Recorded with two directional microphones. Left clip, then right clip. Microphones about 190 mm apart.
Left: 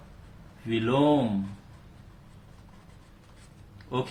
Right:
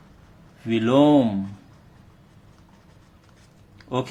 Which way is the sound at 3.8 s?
50° right (ahead or behind).